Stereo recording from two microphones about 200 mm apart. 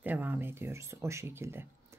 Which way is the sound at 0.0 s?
10° right (ahead or behind).